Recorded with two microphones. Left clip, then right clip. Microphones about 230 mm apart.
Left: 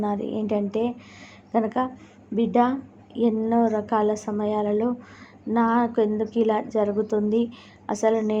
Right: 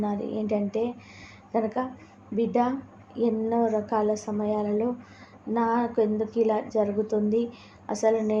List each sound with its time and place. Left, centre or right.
0.0 s a woman's voice: centre